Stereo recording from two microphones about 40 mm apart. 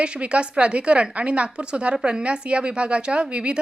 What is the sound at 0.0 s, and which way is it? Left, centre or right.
A woman's voice, right.